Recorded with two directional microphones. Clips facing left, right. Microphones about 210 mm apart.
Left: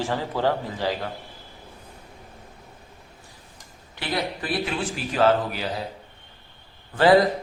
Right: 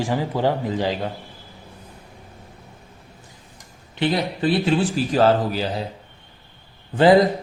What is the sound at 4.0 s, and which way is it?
A man's voice, 25° right (ahead or behind).